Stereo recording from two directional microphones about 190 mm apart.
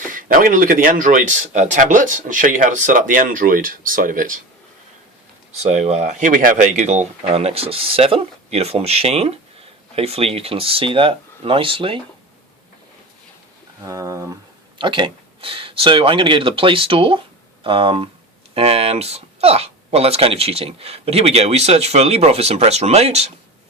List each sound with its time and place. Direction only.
0.0 s speech: 45° right (ahead or behind)
5.6 s speech: 35° right (ahead or behind)
13.8 s speech: 15° right (ahead or behind); by 23.3 s 35° right (ahead or behind)